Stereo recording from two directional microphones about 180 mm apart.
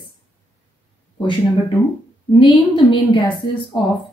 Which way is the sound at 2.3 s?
25° left (ahead or behind).